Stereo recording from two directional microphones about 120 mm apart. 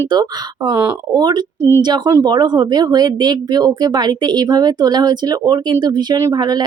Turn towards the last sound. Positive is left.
turn(degrees=-35)  # may be behind; listen again after turning